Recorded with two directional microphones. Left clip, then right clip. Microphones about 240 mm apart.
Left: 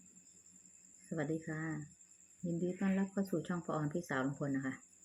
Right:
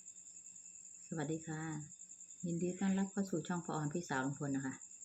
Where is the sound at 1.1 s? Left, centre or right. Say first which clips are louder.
Left 3 dB; centre.